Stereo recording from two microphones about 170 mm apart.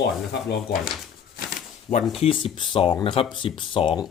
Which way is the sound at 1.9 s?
15° left (ahead or behind).